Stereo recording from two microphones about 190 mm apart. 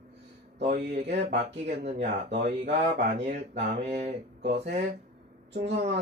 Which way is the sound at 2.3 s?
40° right (ahead or behind).